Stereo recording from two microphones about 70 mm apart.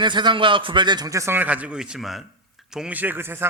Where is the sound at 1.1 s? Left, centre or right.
Right.